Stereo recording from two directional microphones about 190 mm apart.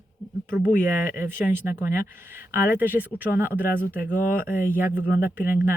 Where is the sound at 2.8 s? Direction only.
10° right (ahead or behind).